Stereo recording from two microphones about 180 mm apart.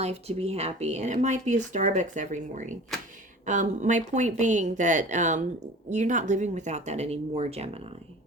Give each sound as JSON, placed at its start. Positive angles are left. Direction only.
{"t": 0.0, "sound": "speech", "side_deg": -35}